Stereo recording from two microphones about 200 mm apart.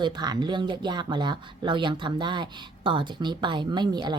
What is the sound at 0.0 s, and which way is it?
Speech, 20° right (ahead or behind).